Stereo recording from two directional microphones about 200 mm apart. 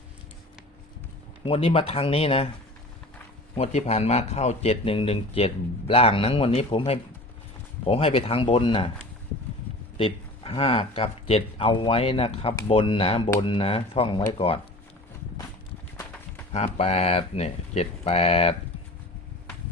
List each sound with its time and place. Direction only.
1.5 s speech: 30° left (ahead or behind)
3.5 s speech: 30° left (ahead or behind)
10.0 s speech: 25° left (ahead or behind)
16.5 s speech: 30° left (ahead or behind)